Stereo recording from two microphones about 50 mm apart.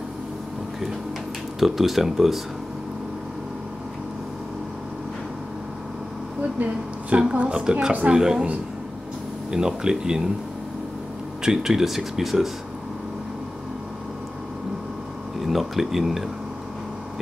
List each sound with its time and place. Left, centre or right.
1.6 s speech: centre
6.6 s speech: right; by 8.5 s centre
9.5 s speech: centre
11.4 s speech: centre
15.3 s speech: centre